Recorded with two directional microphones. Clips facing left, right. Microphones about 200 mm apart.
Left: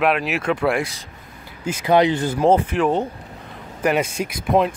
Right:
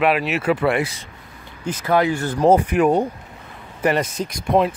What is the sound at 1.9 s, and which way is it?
Speech, 20° left (ahead or behind).